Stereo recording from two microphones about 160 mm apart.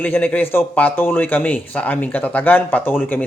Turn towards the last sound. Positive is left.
turn(degrees=10)  # may be behind; listen again after turning